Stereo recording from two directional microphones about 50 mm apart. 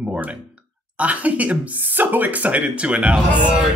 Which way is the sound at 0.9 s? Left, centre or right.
Right.